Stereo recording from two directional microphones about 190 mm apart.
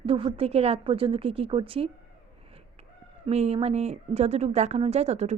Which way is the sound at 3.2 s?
35° right (ahead or behind).